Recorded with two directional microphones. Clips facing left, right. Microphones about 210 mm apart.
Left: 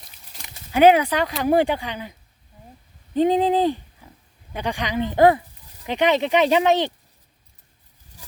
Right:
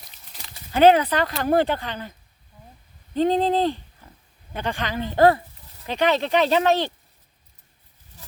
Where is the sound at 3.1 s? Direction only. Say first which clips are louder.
Left 2 dB; 15° left (ahead or behind).